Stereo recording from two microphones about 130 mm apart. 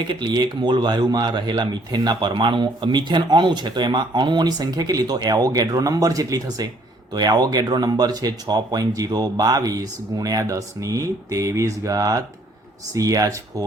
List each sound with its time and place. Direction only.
0.1 s speech: 35° right (ahead or behind)